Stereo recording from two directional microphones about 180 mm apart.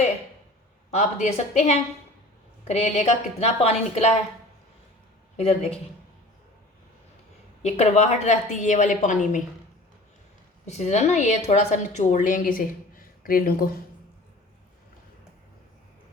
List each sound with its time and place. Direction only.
0.9 s a woman's voice: 35° left (ahead or behind)
7.6 s a woman's voice: 40° left (ahead or behind)
10.7 s a woman's voice: 40° left (ahead or behind)